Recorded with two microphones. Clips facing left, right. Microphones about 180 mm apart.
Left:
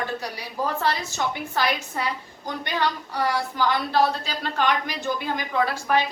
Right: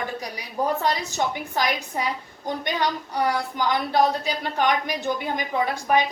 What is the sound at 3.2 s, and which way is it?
A woman's voice, 15° right (ahead or behind).